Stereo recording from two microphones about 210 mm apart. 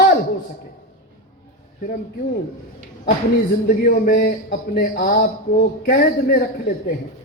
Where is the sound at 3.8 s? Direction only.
45° left (ahead or behind).